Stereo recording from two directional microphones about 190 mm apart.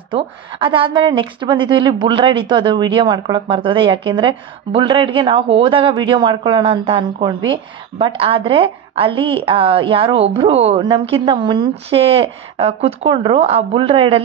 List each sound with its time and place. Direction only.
0.1 s a woman's voice: 25° right (ahead or behind)